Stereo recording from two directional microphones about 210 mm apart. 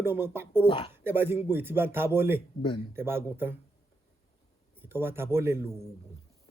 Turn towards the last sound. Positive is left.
turn(degrees=-10)  # may be behind; listen again after turning